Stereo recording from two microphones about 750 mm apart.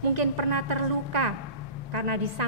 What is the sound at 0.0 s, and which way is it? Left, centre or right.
A woman's voice, right.